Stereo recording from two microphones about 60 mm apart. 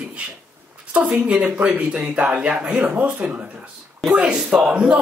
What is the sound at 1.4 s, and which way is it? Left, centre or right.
Speech, right.